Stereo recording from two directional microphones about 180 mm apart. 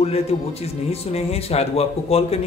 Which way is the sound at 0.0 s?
35° left (ahead or behind).